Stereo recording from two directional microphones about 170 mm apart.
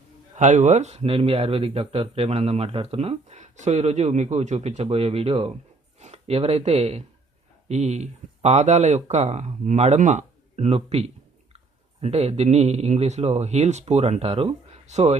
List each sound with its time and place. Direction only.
0.3 s speech: 45° right (ahead or behind)